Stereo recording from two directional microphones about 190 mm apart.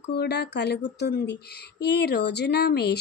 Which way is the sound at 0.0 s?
60° left (ahead or behind).